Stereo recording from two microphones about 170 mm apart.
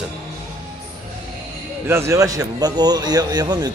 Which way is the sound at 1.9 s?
15° right (ahead or behind).